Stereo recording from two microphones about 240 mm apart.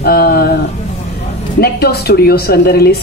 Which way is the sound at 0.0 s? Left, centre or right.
Left.